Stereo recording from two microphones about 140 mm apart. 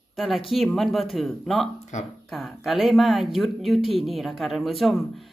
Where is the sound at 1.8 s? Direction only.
60° left (ahead or behind).